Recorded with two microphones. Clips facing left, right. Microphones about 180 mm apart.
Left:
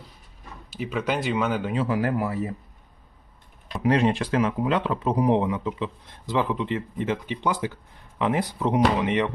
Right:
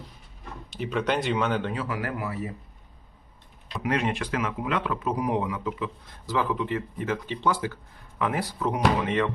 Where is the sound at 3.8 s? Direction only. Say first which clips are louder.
Left 6 dB; 35° left (ahead or behind); by 9.3 s 15° left (ahead or behind).